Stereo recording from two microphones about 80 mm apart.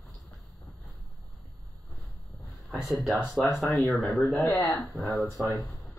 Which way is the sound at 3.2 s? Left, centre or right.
Centre.